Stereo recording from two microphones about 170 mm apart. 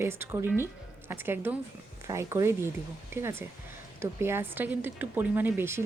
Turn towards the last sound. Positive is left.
turn(degrees=-15)  # may be behind; listen again after turning